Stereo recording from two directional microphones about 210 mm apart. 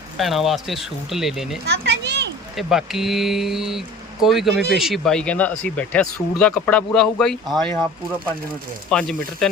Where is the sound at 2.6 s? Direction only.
Centre (ahead or behind).